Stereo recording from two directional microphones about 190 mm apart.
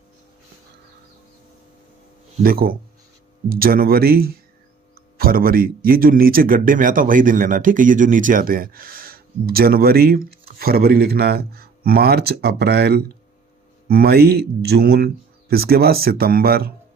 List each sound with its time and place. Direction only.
2.4 s speech: 50° right (ahead or behind)